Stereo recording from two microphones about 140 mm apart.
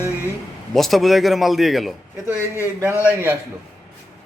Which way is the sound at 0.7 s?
Centre (ahead or behind).